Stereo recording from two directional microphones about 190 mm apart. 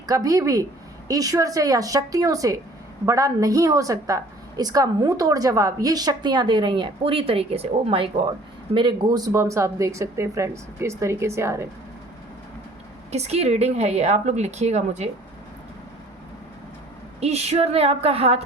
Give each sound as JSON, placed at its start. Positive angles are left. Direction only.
{"t": 0.1, "sound": "a woman's voice", "side_deg": -20}
{"t": 13.1, "sound": "speech", "side_deg": -35}
{"t": 17.2, "sound": "speech", "side_deg": -35}